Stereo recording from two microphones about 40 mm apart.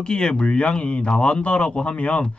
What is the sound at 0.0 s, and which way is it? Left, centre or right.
A man's voice, left.